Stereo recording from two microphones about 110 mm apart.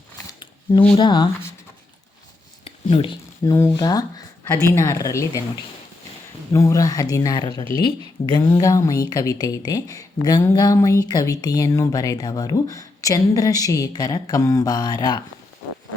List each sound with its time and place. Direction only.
0.3 s a sound: 45° left (ahead or behind)
0.9 s speech: 45° left (ahead or behind)
2.6 s a sound: 55° left (ahead or behind)
3.4 s speech: 30° left (ahead or behind)
4.4 s speech: 25° left (ahead or behind)
6.5 s speech: 30° left (ahead or behind)